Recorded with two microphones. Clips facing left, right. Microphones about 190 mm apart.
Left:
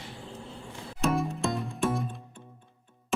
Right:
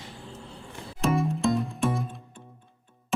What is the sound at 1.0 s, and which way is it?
Music, centre (ahead or behind).